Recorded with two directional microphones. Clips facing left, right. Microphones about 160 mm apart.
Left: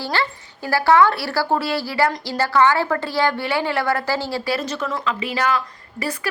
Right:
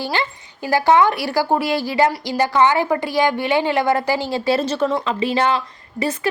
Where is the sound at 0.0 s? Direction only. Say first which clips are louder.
Right 1 dB; 15° right (ahead or behind).